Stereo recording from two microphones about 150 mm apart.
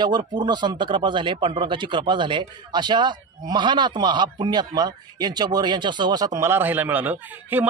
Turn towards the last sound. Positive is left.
turn(degrees=-10)  # may be behind; listen again after turning